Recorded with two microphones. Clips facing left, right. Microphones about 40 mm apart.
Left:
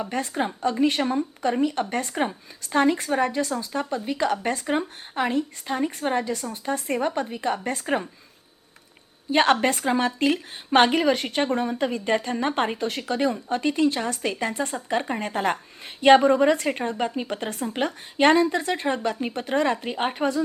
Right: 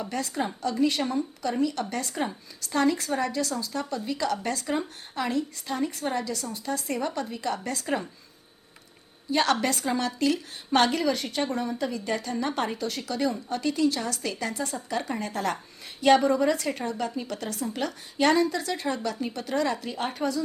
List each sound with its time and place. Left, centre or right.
0.0 s a woman's voice: left
9.3 s a woman's voice: left